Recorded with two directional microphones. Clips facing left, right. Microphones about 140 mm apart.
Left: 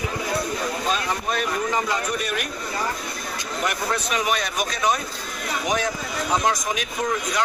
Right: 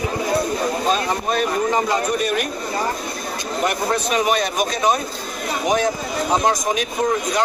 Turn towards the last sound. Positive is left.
turn(degrees=-30)  # may be behind; listen again after turning